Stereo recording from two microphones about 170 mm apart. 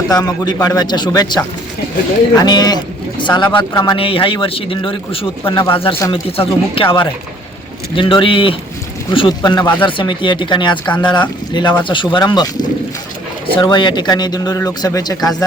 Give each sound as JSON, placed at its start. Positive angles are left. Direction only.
{"t": 0.1, "sound": "a man's voice", "side_deg": 20}